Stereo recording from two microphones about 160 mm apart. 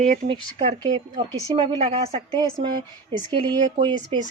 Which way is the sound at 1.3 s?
25° right (ahead or behind).